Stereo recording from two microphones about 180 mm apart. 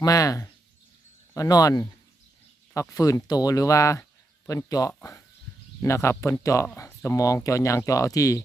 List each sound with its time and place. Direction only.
0.0 s speech: 20° left (ahead or behind)
2.9 s speech: 20° left (ahead or behind)